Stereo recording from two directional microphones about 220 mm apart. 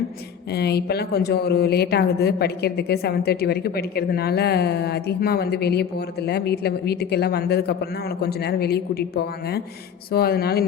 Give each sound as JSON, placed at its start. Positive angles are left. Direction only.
{"t": 0.5, "sound": "a woman's voice", "side_deg": 45}